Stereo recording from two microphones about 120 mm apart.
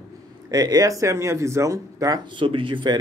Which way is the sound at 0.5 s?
30° right (ahead or behind).